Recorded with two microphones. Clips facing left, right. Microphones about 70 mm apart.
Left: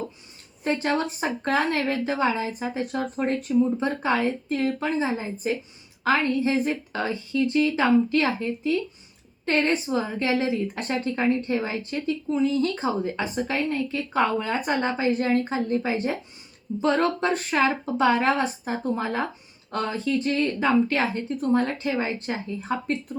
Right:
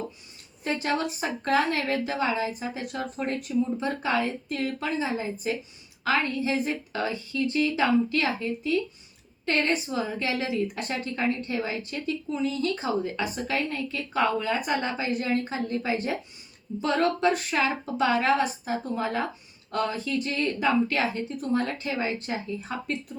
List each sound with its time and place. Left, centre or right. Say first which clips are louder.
0.6 s a woman's voice: left 3 dB; left